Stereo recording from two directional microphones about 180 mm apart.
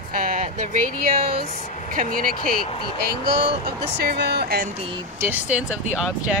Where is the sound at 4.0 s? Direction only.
65° right (ahead or behind).